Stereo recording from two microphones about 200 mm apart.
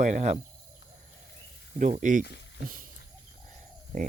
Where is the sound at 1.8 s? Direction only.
40° right (ahead or behind).